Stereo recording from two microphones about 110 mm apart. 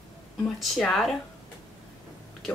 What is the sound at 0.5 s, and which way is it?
Speech, centre (ahead or behind).